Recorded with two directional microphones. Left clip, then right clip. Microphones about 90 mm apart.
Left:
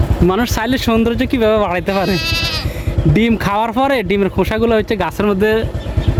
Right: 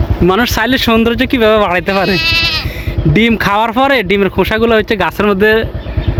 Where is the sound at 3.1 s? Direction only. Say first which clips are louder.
Right 5 dB; 15° left (ahead or behind).